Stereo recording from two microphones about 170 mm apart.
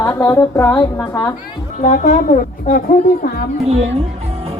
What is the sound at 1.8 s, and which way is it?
Speech, 45° left (ahead or behind).